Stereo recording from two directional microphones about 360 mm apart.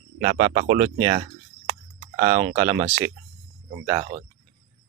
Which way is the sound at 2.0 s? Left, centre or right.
Centre.